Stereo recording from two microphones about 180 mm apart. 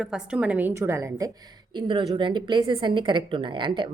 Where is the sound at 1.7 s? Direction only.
25° right (ahead or behind).